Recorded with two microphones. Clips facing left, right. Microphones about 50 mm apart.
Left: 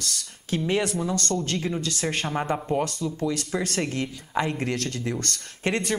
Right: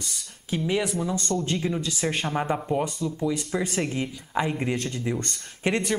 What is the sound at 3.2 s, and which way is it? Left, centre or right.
Speech, centre.